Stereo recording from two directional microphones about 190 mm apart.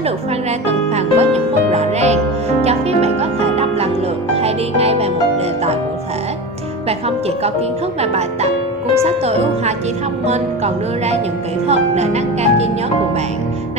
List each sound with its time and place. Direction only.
0.0 s music: 35° right (ahead or behind)
6.9 s music: 30° right (ahead or behind)
8.0 s speech: 35° right (ahead or behind)